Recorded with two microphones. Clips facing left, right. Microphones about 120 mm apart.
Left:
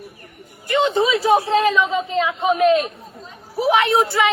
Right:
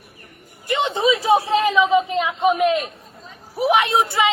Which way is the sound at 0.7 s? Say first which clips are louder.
Left 2 dB; 20° right (ahead or behind).